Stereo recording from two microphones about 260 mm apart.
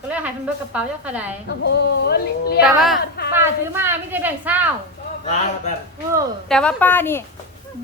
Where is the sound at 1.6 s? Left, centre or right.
Left.